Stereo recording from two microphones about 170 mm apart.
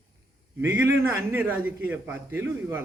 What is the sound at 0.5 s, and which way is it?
A man's voice, 15° right (ahead or behind).